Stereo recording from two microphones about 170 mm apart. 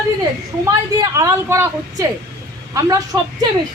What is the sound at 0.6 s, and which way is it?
A woman's voice, 20° right (ahead or behind).